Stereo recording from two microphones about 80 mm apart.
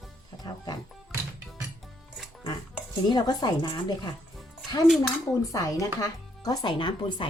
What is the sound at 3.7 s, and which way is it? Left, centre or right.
Speech, left.